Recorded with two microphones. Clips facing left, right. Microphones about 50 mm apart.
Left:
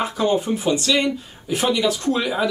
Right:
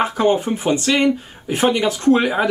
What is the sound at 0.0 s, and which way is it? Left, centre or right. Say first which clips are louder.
Speech: right 3 dB; right.